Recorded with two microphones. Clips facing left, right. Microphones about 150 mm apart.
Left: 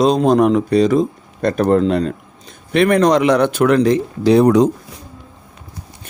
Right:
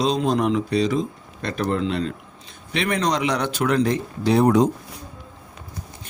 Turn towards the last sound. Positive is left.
turn(degrees=90)